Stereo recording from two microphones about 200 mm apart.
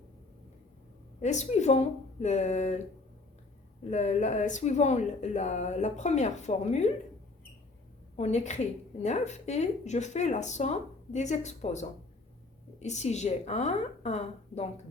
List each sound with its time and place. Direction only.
1.2 s speech: 35° left (ahead or behind)
3.8 s speech: 35° left (ahead or behind)
8.1 s speech: 35° left (ahead or behind)